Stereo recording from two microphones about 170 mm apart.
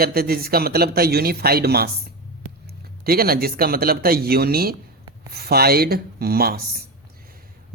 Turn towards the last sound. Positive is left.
turn(degrees=-65)  # may be behind; listen again after turning